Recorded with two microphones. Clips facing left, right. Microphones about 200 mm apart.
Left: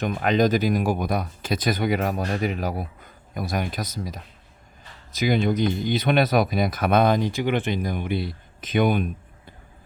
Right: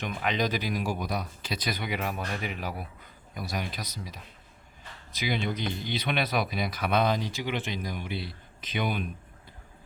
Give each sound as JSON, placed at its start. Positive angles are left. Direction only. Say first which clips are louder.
{"t": 0.0, "sound": "speech", "louder": "left 9 dB", "side_deg": 45}